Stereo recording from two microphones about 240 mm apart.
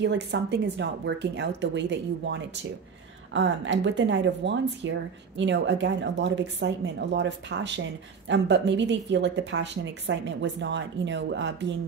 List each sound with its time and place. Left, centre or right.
0.0 s speech: right